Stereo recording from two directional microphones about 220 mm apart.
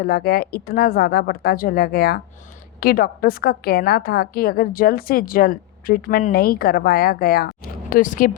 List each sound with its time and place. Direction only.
0.0 s a woman's voice: 45° left (ahead or behind)